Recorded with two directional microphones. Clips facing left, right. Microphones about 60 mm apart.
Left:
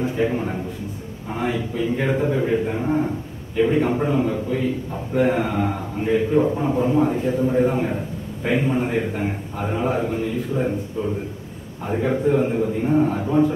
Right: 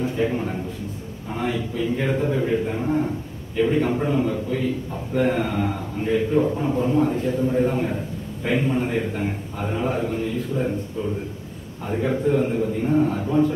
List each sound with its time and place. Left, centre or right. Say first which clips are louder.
0.2 s a sound: left 2 dB; centre
1.3 s a man's voice: left 1 dB; centre
11.8 s a man's voice: left 2 dB; left